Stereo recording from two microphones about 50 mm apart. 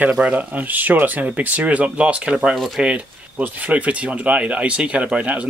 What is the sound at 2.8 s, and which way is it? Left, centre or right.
Speech, right.